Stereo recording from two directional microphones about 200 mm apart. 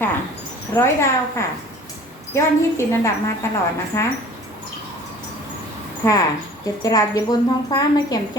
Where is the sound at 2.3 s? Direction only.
15° left (ahead or behind).